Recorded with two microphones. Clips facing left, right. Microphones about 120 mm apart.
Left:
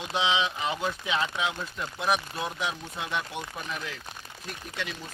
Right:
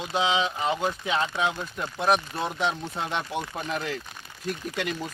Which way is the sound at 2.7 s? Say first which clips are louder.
Right 4 dB; 30° right (ahead or behind).